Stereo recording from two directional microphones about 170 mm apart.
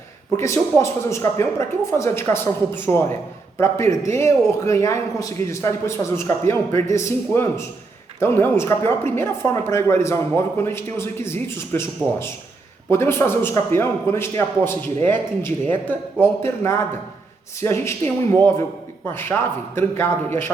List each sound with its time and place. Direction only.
0.3 s speech: 15° left (ahead or behind)
19.1 s speech: 10° left (ahead or behind)